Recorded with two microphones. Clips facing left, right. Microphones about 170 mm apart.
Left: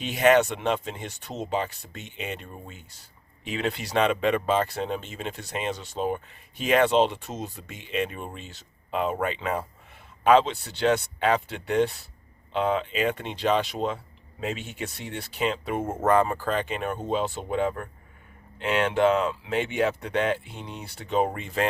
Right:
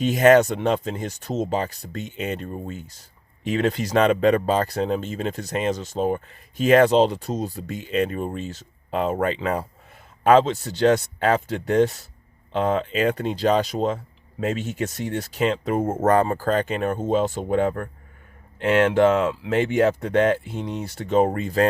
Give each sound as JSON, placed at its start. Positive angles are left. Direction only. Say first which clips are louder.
{"t": 0.0, "sound": "speech", "louder": "right 5 dB", "side_deg": -45}